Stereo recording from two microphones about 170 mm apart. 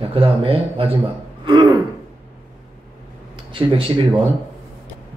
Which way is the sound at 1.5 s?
25° right (ahead or behind).